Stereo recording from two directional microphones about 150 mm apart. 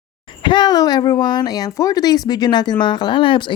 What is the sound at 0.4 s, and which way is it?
Speech, 30° left (ahead or behind).